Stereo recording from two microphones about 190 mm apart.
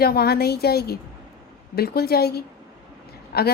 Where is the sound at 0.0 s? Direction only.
55° left (ahead or behind).